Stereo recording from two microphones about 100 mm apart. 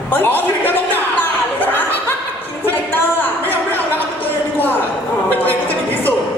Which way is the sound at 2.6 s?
20° left (ahead or behind).